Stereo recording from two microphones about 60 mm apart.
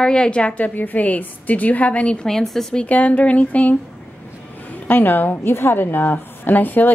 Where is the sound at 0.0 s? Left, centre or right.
Centre.